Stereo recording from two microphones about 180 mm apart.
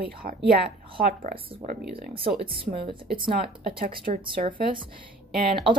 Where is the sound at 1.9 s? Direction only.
30° right (ahead or behind).